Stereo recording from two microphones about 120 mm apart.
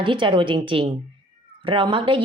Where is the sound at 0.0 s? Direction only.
45° right (ahead or behind).